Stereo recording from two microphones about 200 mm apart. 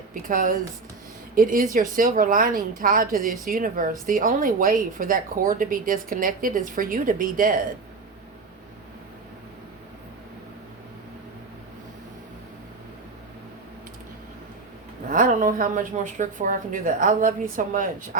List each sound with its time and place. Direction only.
0.1 s speech: 45° right (ahead or behind)
15.1 s a woman's voice: 40° right (ahead or behind)